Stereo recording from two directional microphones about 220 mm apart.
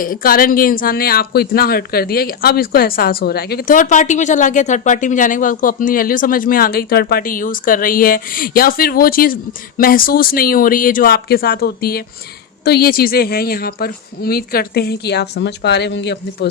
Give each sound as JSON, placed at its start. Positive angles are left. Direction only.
{"t": 0.0, "sound": "a woman's voice", "side_deg": 40}